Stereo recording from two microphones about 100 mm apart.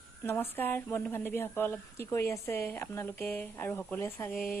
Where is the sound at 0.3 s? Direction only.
20° left (ahead or behind).